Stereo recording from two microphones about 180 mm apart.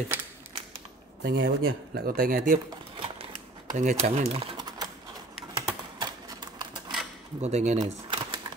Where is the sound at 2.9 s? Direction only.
30° right (ahead or behind).